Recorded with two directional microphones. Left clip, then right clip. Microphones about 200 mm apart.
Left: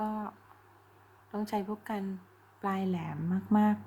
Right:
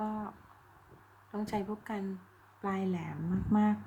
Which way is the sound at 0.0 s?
15° left (ahead or behind).